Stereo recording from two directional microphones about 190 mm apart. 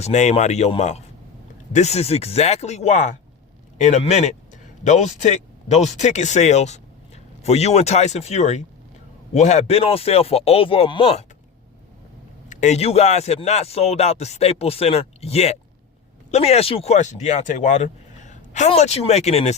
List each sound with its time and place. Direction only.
0.0 s speech: 35° left (ahead or behind)
12.5 s speech: 40° left (ahead or behind)